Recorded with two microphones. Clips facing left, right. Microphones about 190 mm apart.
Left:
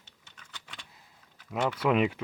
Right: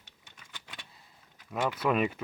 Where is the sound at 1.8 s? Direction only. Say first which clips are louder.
Left 3 dB; 10° left (ahead or behind).